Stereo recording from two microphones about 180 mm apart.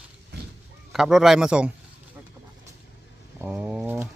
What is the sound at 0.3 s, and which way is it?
Honk, 65° right (ahead or behind).